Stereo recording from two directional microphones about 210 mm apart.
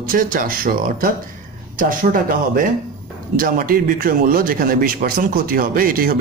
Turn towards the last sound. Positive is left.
turn(degrees=-45)  # may be behind; listen again after turning